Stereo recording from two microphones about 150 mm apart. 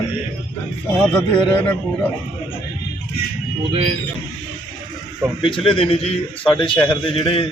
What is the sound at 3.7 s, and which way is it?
Speech, 40° right (ahead or behind).